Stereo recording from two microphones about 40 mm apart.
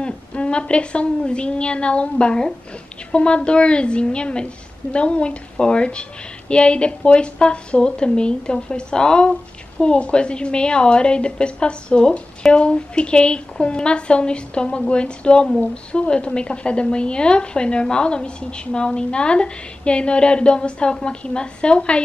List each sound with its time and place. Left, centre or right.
0.0 s a woman's voice: left